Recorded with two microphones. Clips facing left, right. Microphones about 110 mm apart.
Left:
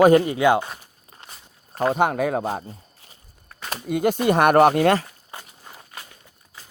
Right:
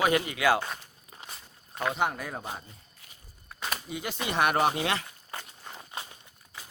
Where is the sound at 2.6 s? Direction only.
35° left (ahead or behind).